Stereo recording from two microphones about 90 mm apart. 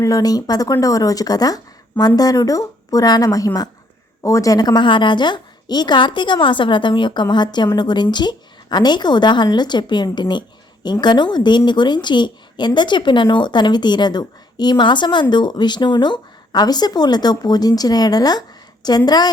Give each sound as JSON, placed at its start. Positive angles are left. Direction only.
{"t": 0.0, "sound": "a woman's voice", "side_deg": 45}